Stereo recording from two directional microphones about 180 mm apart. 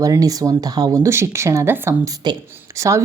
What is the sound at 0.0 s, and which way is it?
Speech, 20° right (ahead or behind).